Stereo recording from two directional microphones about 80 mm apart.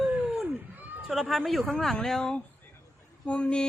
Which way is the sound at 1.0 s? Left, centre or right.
Centre.